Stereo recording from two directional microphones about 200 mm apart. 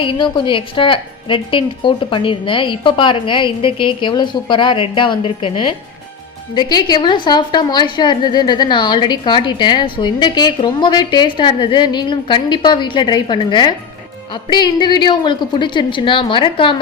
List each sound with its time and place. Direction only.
0.0 s a woman's voice: 25° left (ahead or behind)